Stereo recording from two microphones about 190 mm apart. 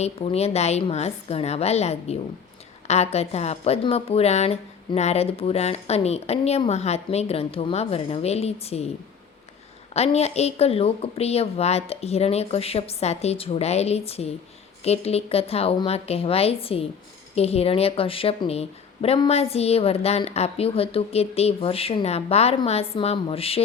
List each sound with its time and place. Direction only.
0.0 s a woman's voice: 35° left (ahead or behind)
9.9 s a woman's voice: 35° left (ahead or behind)